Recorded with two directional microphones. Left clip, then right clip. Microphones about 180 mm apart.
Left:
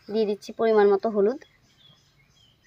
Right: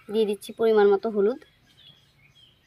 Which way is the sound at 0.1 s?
35° left (ahead or behind).